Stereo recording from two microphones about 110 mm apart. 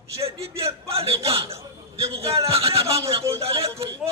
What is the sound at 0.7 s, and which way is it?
A man's voice, 60° right (ahead or behind).